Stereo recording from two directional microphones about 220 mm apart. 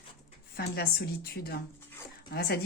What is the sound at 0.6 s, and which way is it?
Speech, 45° left (ahead or behind).